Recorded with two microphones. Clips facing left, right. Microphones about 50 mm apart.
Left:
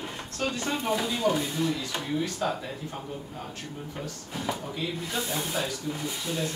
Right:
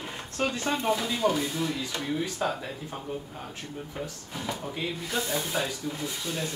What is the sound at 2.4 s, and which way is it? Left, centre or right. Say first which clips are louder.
Speech: right 1 dB; centre.